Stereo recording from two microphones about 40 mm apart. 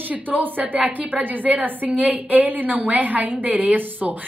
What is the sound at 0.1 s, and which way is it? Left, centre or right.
A woman's voice, right.